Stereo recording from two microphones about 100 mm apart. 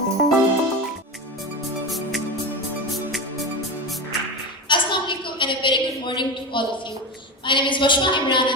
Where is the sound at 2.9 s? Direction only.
Centre (ahead or behind).